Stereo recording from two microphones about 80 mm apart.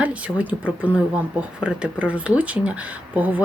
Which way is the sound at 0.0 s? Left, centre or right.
Centre.